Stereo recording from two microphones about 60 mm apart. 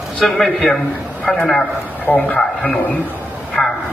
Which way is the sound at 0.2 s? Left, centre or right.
Centre.